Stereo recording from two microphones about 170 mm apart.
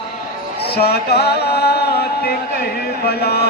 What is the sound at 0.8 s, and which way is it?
Music, 70° left (ahead or behind).